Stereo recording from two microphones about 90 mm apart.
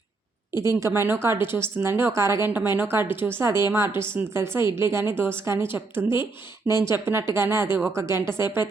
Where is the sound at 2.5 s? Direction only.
20° right (ahead or behind).